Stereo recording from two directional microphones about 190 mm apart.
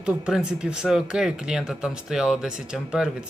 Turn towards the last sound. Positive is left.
turn(degrees=-5)  # may be behind; listen again after turning